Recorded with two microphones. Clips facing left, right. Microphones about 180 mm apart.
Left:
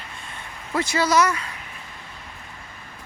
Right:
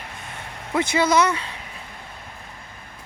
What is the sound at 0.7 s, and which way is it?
Speech, 25° right (ahead or behind).